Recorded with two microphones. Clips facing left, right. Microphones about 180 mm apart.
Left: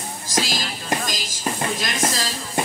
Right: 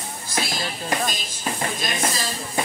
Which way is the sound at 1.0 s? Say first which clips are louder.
Even; 90° left.